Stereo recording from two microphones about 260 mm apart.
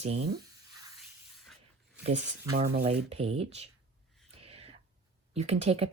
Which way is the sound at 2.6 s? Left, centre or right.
Right.